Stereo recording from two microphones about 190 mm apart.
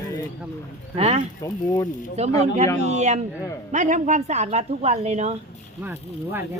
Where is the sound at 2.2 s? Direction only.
35° right (ahead or behind).